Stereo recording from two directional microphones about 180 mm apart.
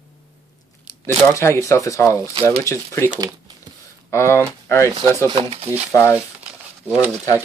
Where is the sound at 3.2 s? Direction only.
20° right (ahead or behind).